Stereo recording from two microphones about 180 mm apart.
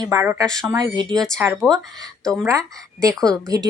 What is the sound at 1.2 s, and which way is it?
Speech, 5° left (ahead or behind).